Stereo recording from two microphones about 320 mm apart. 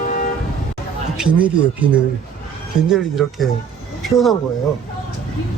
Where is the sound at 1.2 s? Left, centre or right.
Centre.